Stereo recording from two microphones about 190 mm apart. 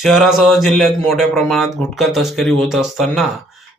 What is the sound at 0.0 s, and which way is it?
Speech, centre (ahead or behind).